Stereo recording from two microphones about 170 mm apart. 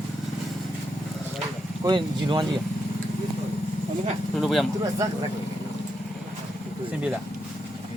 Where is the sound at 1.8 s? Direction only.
25° right (ahead or behind).